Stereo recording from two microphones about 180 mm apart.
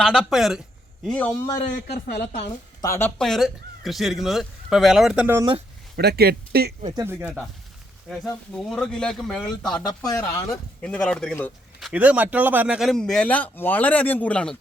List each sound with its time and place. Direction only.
0.0 s a man's voice: centre (ahead or behind)
1.9 s speech: 60° left (ahead or behind)
2.8 s speech: 15° left (ahead or behind)
3.2 s a man's voice: centre (ahead or behind)
6.0 s speech: 60° right (ahead or behind)
6.9 s speech: 15° right (ahead or behind)
8.7 s a man's voice: 5° left (ahead or behind)
9.8 s a man's voice: 20° left (ahead or behind)
10.8 s speech: 5° left (ahead or behind)
11.9 s a man's voice: 10° right (ahead or behind)